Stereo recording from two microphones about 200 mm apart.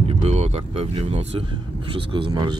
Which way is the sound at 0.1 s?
35° right (ahead or behind).